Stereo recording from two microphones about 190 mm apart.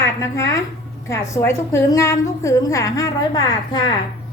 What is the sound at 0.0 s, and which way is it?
A woman's voice, 15° left (ahead or behind).